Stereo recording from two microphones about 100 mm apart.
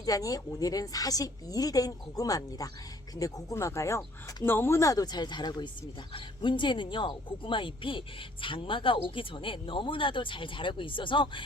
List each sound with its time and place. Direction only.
0.0 s a woman's voice: 35° left (ahead or behind); by 11.4 s 55° left (ahead or behind)